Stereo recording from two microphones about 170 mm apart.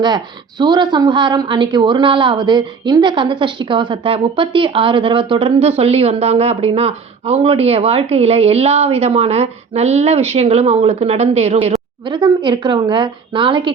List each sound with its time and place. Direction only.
0.6 s a woman's voice: 25° right (ahead or behind)